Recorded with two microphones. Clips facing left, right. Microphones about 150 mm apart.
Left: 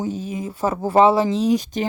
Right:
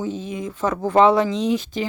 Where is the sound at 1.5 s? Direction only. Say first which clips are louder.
Left 2 dB; 45° left (ahead or behind).